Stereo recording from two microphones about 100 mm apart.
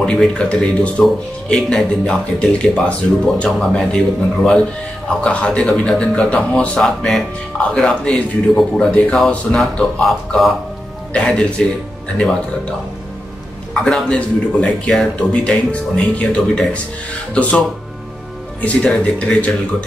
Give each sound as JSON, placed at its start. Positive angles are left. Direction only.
{"t": 0.0, "sound": "a man's voice", "side_deg": 10}
{"t": 5.2, "sound": "a man's voice", "side_deg": 10}
{"t": 13.8, "sound": "a man's voice", "side_deg": 10}